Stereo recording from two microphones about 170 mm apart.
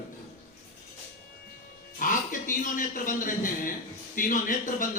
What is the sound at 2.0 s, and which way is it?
A man's voice, 55° left (ahead or behind).